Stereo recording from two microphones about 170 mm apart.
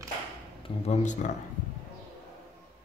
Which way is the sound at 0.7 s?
40° left (ahead or behind).